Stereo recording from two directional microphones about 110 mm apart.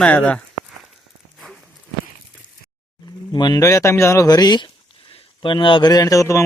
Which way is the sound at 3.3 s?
40° left (ahead or behind).